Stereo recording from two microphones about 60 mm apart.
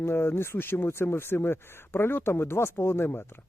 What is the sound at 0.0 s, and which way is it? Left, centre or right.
Speech, left.